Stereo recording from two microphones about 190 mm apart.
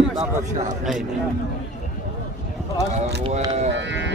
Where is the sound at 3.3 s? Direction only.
30° right (ahead or behind).